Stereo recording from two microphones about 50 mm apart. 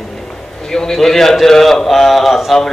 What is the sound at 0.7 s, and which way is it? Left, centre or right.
A man's voice, centre.